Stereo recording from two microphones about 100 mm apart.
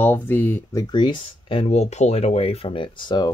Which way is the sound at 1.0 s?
55° left (ahead or behind).